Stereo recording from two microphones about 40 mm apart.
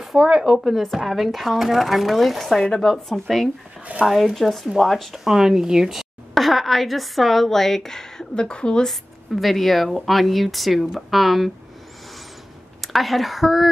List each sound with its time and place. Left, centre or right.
0.0 s speech: centre
4.0 s speech: centre
5.2 s speech: centre
6.3 s speech: centre
8.5 s a woman's voice: left
9.3 s speech: centre
12.8 s speech: centre